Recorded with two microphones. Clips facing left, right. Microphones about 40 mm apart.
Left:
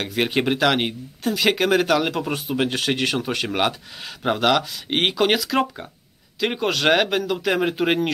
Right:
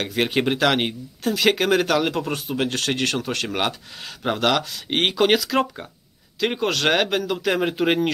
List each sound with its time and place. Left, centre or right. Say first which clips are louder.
0.0 s speech: even; centre